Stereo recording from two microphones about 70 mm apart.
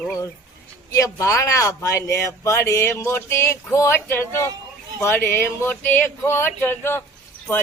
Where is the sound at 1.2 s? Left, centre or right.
Left.